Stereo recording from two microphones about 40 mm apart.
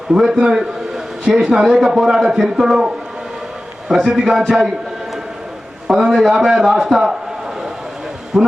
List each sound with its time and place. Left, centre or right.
0.2 s a man's voice: centre
4.0 s a man's voice: centre
5.9 s a man's voice: centre
8.3 s speech: centre